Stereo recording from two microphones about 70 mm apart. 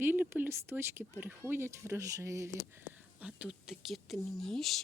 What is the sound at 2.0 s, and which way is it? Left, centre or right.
Speech, right.